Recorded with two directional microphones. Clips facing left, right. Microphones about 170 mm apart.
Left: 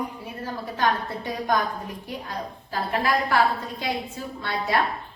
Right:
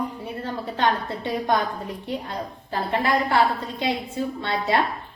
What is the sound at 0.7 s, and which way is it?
A woman's voice, 25° right (ahead or behind).